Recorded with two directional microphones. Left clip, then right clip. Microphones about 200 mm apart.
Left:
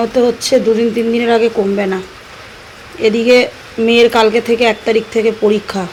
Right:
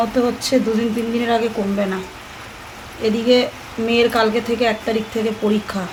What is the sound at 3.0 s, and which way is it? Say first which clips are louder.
A woman's voice: left 6 dB; 20° left (ahead or behind).